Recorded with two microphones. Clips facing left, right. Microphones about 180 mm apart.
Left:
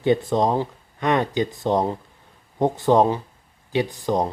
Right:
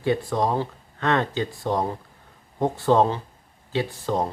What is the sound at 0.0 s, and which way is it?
Speech, 20° left (ahead or behind).